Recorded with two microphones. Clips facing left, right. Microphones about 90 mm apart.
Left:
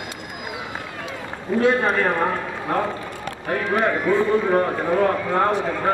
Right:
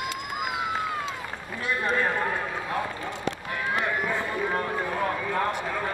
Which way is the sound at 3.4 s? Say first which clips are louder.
Left 10 dB; 65° left (ahead or behind).